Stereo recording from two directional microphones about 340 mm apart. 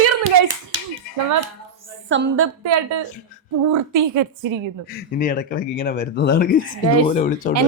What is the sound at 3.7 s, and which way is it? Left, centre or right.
Speech, right.